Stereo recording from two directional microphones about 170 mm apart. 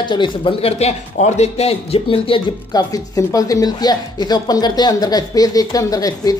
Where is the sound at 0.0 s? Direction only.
30° left (ahead or behind).